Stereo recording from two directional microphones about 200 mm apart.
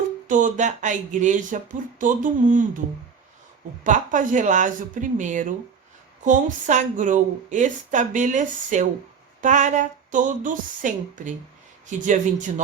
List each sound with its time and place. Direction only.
0.3 s speech: 40° right (ahead or behind)
3.8 s speech: 40° right (ahead or behind)